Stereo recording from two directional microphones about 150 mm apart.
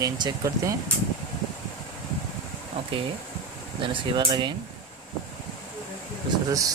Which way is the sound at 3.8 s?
35° right (ahead or behind).